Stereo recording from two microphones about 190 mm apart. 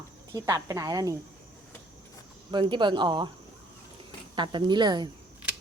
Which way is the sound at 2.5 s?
25° right (ahead or behind).